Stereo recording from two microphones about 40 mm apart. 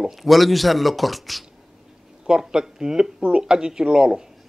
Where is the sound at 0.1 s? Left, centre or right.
Centre.